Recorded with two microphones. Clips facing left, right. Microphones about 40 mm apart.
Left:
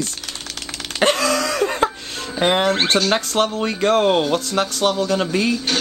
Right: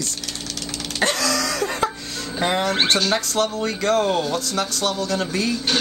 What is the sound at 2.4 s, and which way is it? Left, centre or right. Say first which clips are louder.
Speech: left 3 dB; left.